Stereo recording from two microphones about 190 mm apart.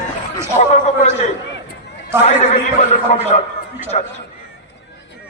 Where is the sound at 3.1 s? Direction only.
45° left (ahead or behind).